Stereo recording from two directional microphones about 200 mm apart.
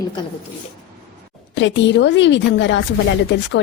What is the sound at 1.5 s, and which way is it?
Speech, 65° left (ahead or behind).